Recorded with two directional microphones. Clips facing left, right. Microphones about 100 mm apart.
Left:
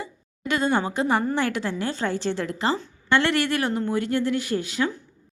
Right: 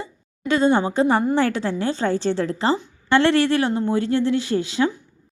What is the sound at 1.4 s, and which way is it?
Speech, 30° right (ahead or behind).